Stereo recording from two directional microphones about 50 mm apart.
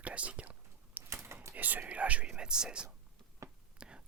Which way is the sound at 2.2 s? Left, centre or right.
Centre.